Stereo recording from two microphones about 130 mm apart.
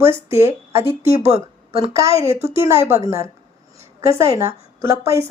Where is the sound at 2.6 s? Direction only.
20° right (ahead or behind).